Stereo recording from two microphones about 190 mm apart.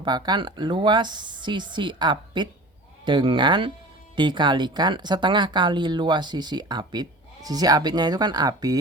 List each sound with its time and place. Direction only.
0.0 s speech: 25° right (ahead or behind)